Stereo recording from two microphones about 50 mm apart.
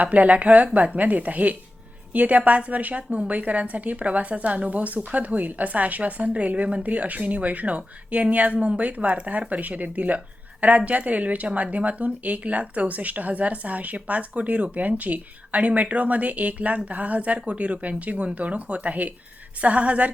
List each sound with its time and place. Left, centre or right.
0.0 s a woman's voice: right